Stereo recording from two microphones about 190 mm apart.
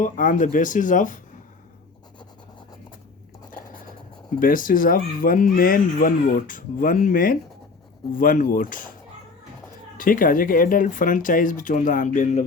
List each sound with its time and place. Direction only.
0.0 s speech: 45° left (ahead or behind)
4.4 s speech: 45° left (ahead or behind)
10.0 s speech: 45° left (ahead or behind)